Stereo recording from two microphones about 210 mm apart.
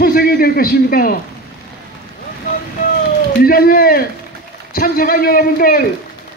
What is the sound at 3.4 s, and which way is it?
A man's voice, 45° left (ahead or behind).